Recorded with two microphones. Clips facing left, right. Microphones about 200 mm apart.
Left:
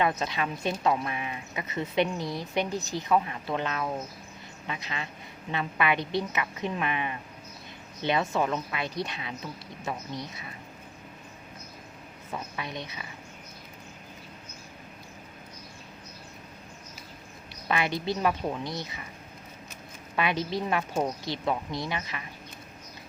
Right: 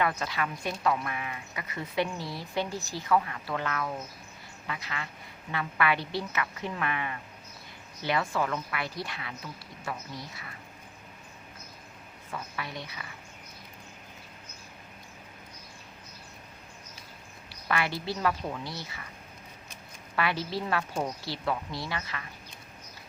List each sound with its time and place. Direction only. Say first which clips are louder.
0.0 s speech: left 2 dB; 20° left (ahead or behind)
12.3 s speech: left 2 dB; 20° left (ahead or behind)
17.7 s speech: left 2 dB; 20° left (ahead or behind)
20.1 s speech: left 2 dB; 20° left (ahead or behind)